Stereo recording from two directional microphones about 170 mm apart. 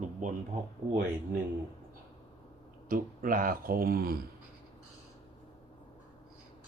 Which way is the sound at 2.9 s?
55° right (ahead or behind).